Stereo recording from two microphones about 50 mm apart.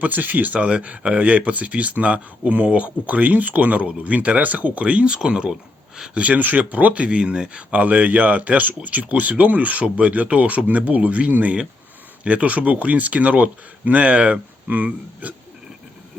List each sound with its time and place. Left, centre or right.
0.0 s speech: right
0.6 s speech: right
6.1 s speech: right